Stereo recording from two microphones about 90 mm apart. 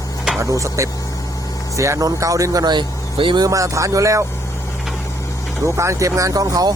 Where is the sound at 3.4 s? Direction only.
40° right (ahead or behind).